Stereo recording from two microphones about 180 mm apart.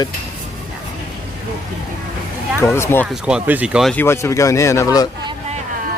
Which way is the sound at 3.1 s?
5° right (ahead or behind).